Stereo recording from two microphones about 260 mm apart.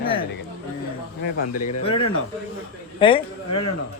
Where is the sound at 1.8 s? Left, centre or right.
Left.